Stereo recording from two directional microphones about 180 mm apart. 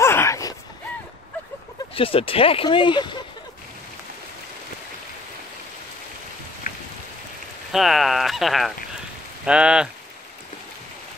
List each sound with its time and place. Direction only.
0.0 s a sound: 15° left (ahead or behind)
2.0 s speech: 30° left (ahead or behind)
6.7 s rain: 50° left (ahead or behind)
7.7 s speech: centre (ahead or behind)